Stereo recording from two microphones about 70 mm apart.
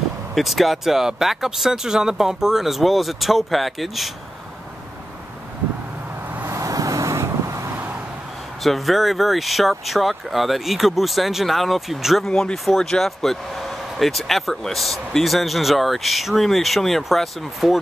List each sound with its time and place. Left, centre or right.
0.3 s speech: centre
6.5 s vehicle: right
8.6 s speech: centre
12.3 s speech: centre